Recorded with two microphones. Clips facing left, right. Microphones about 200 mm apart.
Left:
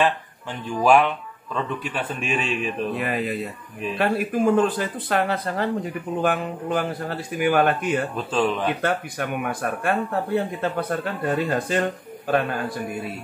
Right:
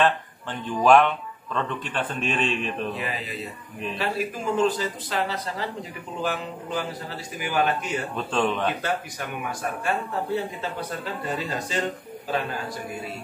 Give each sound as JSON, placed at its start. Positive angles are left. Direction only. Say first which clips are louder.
{"t": 0.7, "sound": "speech", "louder": "even", "side_deg": 10}
{"t": 3.0, "sound": "speech", "louder": "left 7 dB", "side_deg": 55}
{"t": 8.3, "sound": "speech", "louder": "left 1 dB", "side_deg": 5}
{"t": 8.8, "sound": "speech", "louder": "left 4 dB", "side_deg": 55}